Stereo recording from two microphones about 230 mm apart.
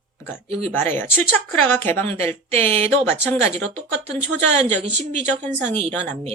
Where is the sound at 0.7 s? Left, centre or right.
Centre.